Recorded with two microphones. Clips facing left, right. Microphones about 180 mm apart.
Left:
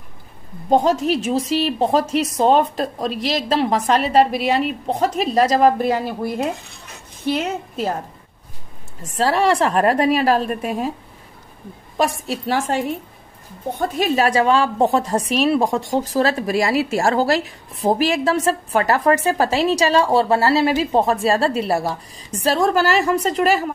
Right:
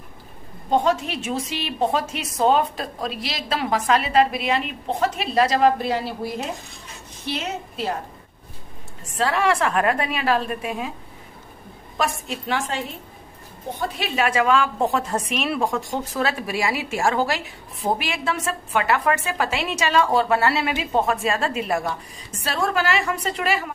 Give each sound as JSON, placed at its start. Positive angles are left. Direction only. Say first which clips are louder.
{"t": 0.7, "sound": "a woman's voice", "louder": "left 4 dB", "side_deg": 40}
{"t": 9.1, "sound": "a woman's voice", "louder": "left 4 dB", "side_deg": 35}
{"t": 12.0, "sound": "a woman's voice", "louder": "left 5 dB", "side_deg": 35}